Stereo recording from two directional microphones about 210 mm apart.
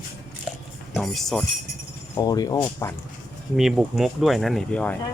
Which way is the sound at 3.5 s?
Centre (ahead or behind).